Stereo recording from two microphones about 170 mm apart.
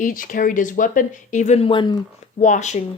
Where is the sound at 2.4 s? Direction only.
45° left (ahead or behind).